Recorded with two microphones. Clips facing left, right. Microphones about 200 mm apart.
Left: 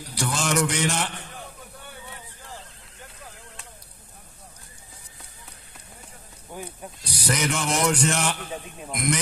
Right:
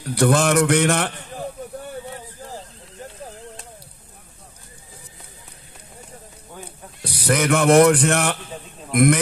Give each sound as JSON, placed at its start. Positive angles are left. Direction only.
{"t": 0.0, "sound": "speech", "side_deg": -60}
{"t": 2.1, "sound": "a sound", "side_deg": -40}
{"t": 6.6, "sound": "snake", "side_deg": 10}
{"t": 7.0, "sound": "speech", "side_deg": -60}